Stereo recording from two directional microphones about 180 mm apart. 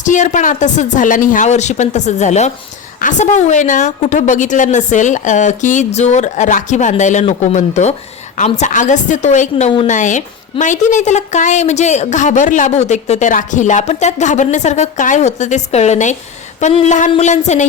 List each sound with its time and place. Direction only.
0.0 s a woman's voice: 45° left (ahead or behind)